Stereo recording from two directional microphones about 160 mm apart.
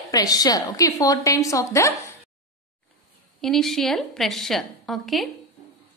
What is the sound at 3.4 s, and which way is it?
A woman's voice, centre (ahead or behind).